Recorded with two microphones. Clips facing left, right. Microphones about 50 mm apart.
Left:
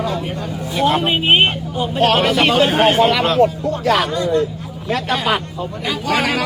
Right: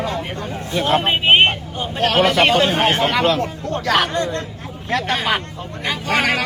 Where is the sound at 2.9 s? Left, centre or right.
Right.